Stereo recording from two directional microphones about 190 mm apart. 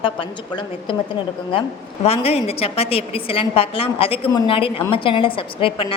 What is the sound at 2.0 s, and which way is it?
A woman's voice, 30° left (ahead or behind).